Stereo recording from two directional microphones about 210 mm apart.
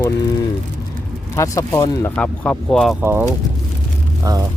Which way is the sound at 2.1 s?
5° left (ahead or behind).